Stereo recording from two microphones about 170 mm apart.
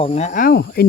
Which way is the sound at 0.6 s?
80° left.